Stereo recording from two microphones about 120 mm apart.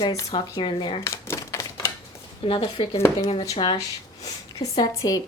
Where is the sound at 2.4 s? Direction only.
45° left (ahead or behind).